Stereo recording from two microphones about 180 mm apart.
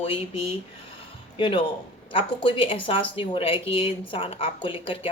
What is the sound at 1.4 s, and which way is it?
A woman's voice, 30° left (ahead or behind).